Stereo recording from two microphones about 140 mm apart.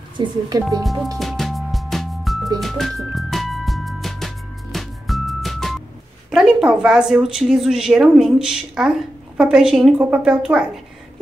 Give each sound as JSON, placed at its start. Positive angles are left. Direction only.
{"t": 0.2, "sound": "speech", "side_deg": -25}
{"t": 1.1, "sound": "music", "side_deg": 0}
{"t": 6.3, "sound": "speech", "side_deg": -5}